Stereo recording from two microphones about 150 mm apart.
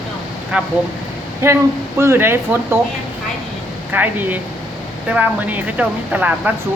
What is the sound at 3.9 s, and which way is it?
Speech, 10° right (ahead or behind).